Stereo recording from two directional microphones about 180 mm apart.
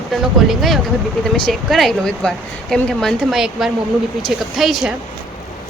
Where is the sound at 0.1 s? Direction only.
Centre (ahead or behind).